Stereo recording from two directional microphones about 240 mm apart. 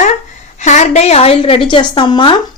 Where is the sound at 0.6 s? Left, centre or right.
Left.